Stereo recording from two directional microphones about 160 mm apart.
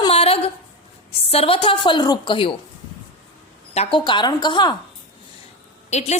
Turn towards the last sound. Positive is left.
turn(degrees=45)  # may be behind; listen again after turning